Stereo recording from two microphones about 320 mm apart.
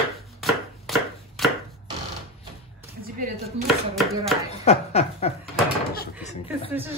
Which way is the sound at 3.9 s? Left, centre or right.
Centre.